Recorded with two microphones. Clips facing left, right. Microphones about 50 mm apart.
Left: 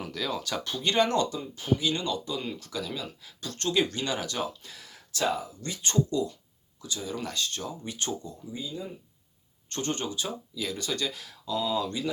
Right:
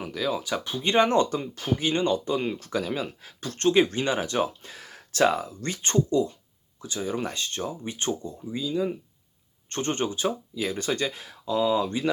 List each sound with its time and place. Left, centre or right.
0.0 s speech: centre; by 5.7 s right
5.7 s speech: right
8.5 s speech: right
9.6 s speech: right